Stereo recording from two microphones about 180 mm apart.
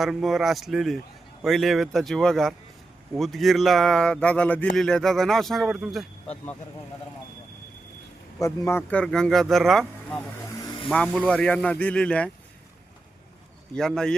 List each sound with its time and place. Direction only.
0.0 s speech: centre (ahead or behind)
8.4 s speech: 15° left (ahead or behind)
10.2 s vehicle: 20° left (ahead or behind)
10.8 s speech: 5° left (ahead or behind)
13.7 s speech: 5° left (ahead or behind)